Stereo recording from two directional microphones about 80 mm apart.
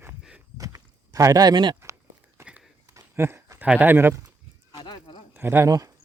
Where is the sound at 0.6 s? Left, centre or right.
Right.